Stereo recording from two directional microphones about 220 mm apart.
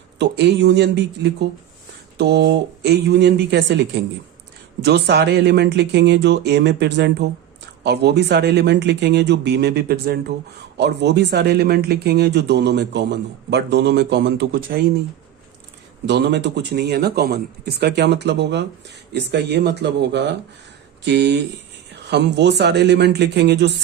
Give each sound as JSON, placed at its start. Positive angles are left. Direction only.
{"t": 0.2, "sound": "speech", "side_deg": -50}
{"t": 4.8, "sound": "speech", "side_deg": -50}
{"t": 16.0, "sound": "speech", "side_deg": -50}